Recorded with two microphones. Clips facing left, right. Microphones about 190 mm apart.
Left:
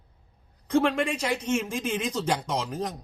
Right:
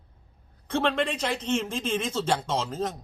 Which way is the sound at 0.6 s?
10° left (ahead or behind).